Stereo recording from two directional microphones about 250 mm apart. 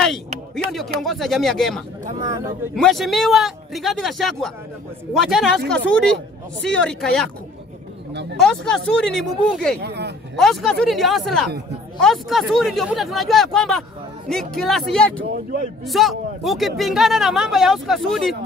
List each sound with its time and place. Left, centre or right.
0.7 s speech: centre
8.1 s speech: right
8.4 s speech: centre
9.8 s speech: right
10.3 s speech: centre